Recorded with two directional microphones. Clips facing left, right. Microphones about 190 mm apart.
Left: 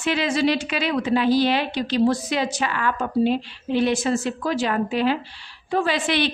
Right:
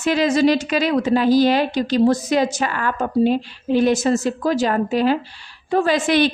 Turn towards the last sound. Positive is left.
turn(degrees=-45)  # may be behind; listen again after turning